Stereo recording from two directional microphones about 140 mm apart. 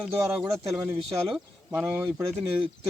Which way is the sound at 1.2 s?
Centre (ahead or behind).